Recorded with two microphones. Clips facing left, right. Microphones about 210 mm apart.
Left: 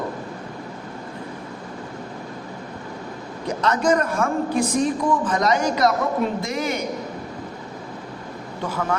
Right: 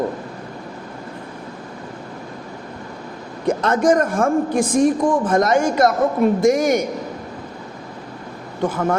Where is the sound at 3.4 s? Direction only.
50° right (ahead or behind).